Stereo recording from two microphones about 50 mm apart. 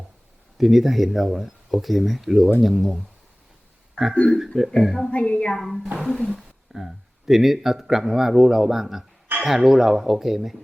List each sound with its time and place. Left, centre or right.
0.6 s speech: centre
4.5 s speech: centre
5.1 s a woman's voice: left
5.5 s speech: centre